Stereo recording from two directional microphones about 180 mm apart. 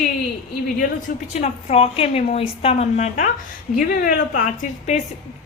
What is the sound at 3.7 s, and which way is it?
A woman's voice, 50° left (ahead or behind).